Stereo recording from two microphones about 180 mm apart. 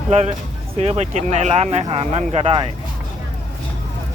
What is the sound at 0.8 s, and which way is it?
Speech, 35° right (ahead or behind).